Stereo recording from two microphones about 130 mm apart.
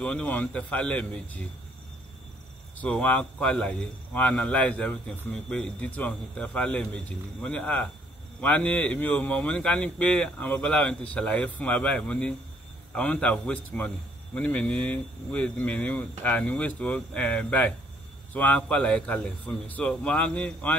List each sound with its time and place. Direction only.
0.0 s a man's voice: 10° left (ahead or behind)
2.8 s a man's voice: 10° left (ahead or behind)